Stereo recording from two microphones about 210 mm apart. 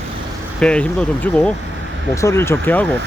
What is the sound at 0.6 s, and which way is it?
Speech, 5° left (ahead or behind).